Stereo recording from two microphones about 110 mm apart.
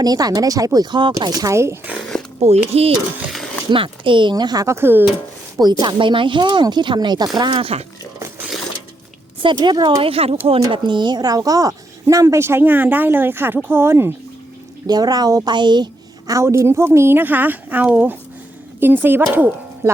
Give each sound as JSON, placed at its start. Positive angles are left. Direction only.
{"t": 0.0, "sound": "speech", "side_deg": -35}
{"t": 2.0, "sound": "a sound", "side_deg": 5}
{"t": 2.4, "sound": "speech", "side_deg": -80}
{"t": 3.3, "sound": "a sound", "side_deg": 5}
{"t": 3.7, "sound": "speech", "side_deg": -50}
{"t": 4.6, "sound": "speech", "side_deg": -25}
{"t": 5.8, "sound": "speech", "side_deg": -45}
{"t": 7.6, "sound": "speech", "side_deg": -65}
{"t": 9.4, "sound": "speech", "side_deg": -45}
{"t": 10.0, "sound": "speech", "side_deg": -60}
{"t": 10.7, "sound": "speech", "side_deg": -45}
{"t": 14.8, "sound": "speech", "side_deg": -35}